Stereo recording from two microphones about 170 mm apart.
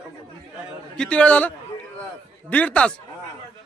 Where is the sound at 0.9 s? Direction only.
5° left (ahead or behind).